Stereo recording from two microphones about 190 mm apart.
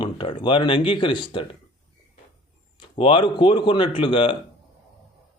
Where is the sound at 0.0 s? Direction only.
25° left (ahead or behind).